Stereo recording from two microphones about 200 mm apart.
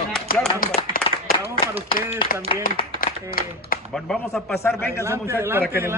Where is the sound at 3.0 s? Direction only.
45° left (ahead or behind).